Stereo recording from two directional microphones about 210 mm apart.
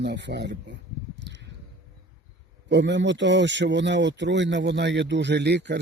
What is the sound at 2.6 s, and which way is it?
Speech, 55° right (ahead or behind).